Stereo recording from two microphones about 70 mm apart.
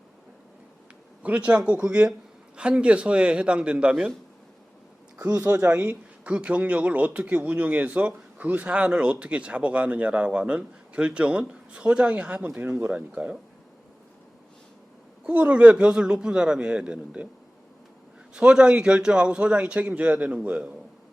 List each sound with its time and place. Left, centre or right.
1.2 s speech: centre
5.6 s speech: right
12.9 s speech: centre
15.3 s speech: centre
18.3 s speech: centre